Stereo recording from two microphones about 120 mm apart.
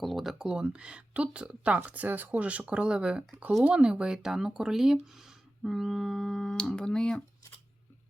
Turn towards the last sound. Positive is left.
turn(degrees=5)  # may be behind; listen again after turning